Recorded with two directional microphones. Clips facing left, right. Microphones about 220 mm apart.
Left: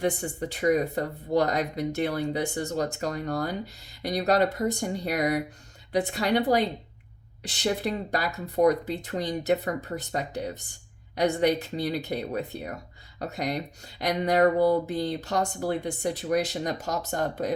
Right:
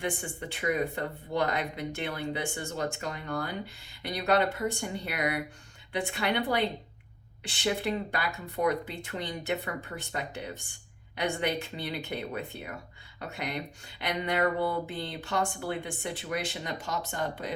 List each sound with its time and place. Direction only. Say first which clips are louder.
0.0 s speech: left 6 dB; 40° left (ahead or behind)